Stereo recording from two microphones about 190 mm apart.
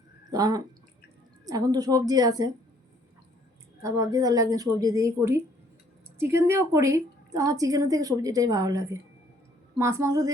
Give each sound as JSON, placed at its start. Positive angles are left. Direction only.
{"t": 0.3, "sound": "a woman's voice", "side_deg": -20}
{"t": 3.8, "sound": "a woman's voice", "side_deg": -15}